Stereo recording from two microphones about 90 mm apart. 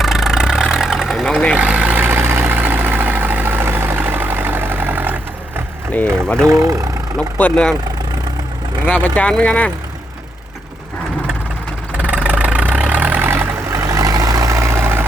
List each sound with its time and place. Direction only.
0.0 s vehicle: 5° right (ahead or behind)
1.3 s speech: 10° left (ahead or behind)
1.5 s vehicle: 15° right (ahead or behind)
6.2 s speech: 10° left (ahead or behind)
6.5 s speech: 35° right (ahead or behind)
7.2 s speech: 15° left (ahead or behind)
8.9 s speech: 15° left (ahead or behind)
11.9 s vehicle: 15° right (ahead or behind)